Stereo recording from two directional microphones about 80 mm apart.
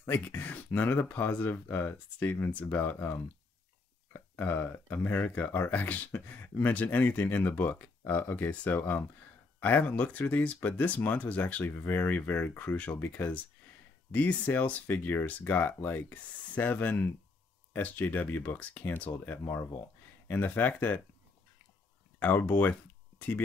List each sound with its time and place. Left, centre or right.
0.0 s speech: left
22.2 s speech: left